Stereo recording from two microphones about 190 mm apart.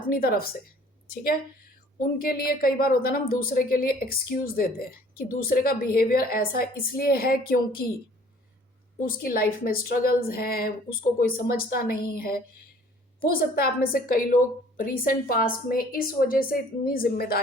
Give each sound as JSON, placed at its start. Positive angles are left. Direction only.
{"t": 0.1, "sound": "a woman's voice", "side_deg": 50}
{"t": 9.0, "sound": "a woman's voice", "side_deg": 50}
{"t": 13.6, "sound": "a woman's voice", "side_deg": 50}